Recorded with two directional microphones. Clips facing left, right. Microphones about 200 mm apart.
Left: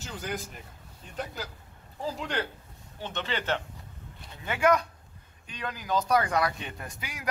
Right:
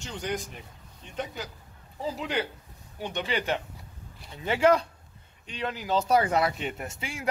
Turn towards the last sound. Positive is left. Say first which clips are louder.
# right 5 dB
turn(degrees=-25)  # may be behind; listen again after turning